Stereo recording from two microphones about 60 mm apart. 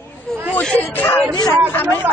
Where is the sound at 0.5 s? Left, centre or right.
Left.